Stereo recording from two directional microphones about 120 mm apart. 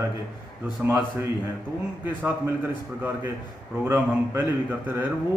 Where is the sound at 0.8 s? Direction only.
10° right (ahead or behind).